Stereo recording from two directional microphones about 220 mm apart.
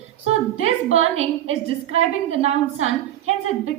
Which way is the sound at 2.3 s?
30° right (ahead or behind).